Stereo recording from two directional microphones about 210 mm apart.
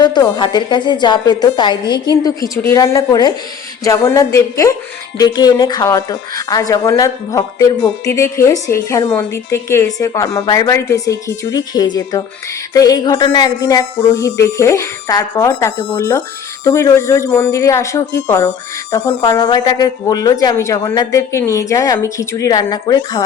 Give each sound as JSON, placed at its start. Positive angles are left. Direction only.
{"t": 0.0, "sound": "a woman's voice", "side_deg": 20}